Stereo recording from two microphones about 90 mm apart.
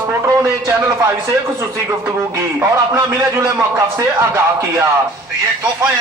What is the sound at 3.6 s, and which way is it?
Speech, 25° right (ahead or behind).